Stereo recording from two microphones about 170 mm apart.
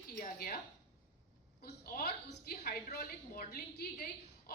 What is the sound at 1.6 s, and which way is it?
A woman's voice, 70° left (ahead or behind).